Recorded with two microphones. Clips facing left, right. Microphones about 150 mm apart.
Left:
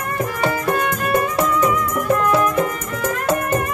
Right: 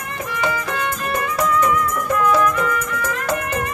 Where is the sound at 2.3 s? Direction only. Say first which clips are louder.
Even; 30° left (ahead or behind).